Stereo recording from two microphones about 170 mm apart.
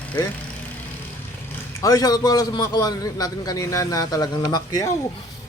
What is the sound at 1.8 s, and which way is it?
A man's voice, 20° left (ahead or behind).